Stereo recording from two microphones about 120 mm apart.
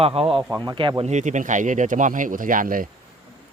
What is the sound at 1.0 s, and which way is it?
Speech, 80° right.